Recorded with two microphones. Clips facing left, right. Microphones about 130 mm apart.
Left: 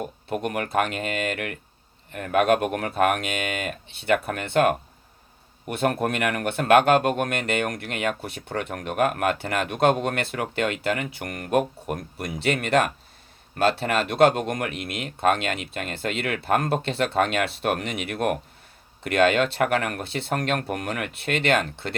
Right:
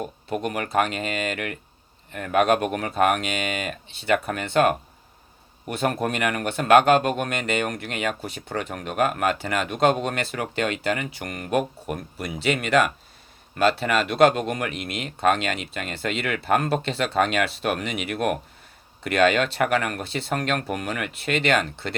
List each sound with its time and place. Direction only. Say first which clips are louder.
0.4 s speech: right 1 dB; 55° left (ahead or behind)
13.6 s speech: right 1 dB; 50° left (ahead or behind)